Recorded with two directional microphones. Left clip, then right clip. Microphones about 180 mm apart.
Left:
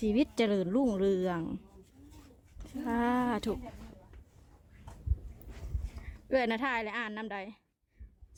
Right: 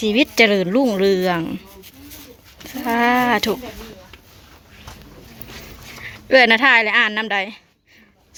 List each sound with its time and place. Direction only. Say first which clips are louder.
0.0 s a woman's voice: right 15 dB; 25° left (ahead or behind)
2.8 s a woman's voice: right 15 dB; 10° left (ahead or behind)
6.0 s speech: right 18 dB; 5° left (ahead or behind)